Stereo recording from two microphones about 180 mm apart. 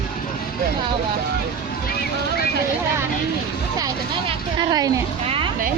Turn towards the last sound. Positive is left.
turn(degrees=-30)  # may be behind; listen again after turning